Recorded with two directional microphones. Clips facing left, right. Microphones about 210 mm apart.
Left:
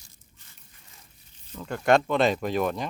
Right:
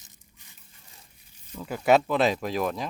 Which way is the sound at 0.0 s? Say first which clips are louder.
Right 1 dB; 20° right (ahead or behind).